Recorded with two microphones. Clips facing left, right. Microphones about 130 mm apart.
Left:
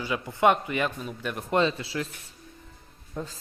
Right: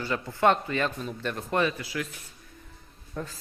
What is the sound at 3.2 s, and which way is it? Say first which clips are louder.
Speech: left 1 dB; 20° left (ahead or behind).